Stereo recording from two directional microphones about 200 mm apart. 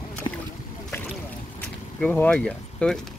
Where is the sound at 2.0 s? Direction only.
5° left (ahead or behind).